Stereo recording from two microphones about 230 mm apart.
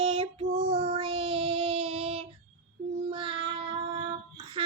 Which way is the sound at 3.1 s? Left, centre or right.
Right.